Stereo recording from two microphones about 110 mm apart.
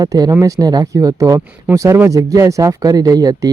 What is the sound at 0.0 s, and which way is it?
Speech, 35° right (ahead or behind).